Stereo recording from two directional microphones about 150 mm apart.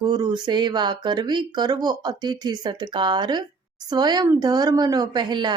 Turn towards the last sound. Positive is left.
turn(degrees=-30)  # may be behind; listen again after turning